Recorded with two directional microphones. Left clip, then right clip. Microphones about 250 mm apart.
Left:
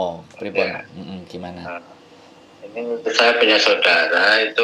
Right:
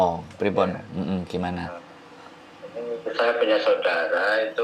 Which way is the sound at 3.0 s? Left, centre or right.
Left.